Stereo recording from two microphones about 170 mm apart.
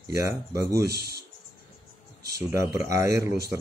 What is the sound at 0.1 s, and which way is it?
Speech, 20° right (ahead or behind).